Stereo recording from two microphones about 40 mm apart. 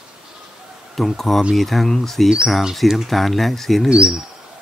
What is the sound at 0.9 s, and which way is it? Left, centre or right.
Speech, centre.